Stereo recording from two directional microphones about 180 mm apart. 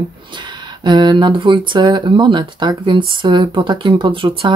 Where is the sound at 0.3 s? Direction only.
25° right (ahead or behind).